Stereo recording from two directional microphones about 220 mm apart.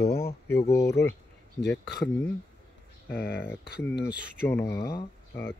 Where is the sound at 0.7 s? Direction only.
15° left (ahead or behind).